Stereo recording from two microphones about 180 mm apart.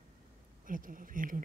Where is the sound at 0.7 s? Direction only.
50° right (ahead or behind).